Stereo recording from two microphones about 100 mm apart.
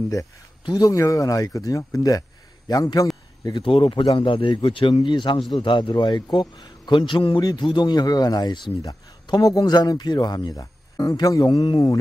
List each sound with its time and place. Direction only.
0.7 s a man's voice: 40° left (ahead or behind)
3.6 s a man's voice: 65° left (ahead or behind)
8.8 s a man's voice: 35° left (ahead or behind)
11.4 s a man's voice: 50° left (ahead or behind)